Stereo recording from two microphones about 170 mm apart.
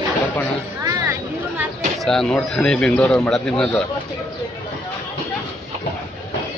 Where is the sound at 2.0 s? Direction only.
5° left (ahead or behind).